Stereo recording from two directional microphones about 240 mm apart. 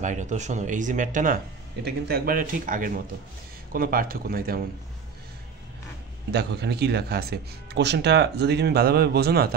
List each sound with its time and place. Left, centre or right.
0.0 s speech: right
6.3 s speech: right